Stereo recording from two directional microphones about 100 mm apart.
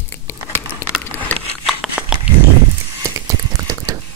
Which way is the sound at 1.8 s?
10° right (ahead or behind).